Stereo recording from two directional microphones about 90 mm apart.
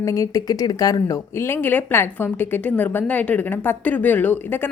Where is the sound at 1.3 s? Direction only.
25° left (ahead or behind).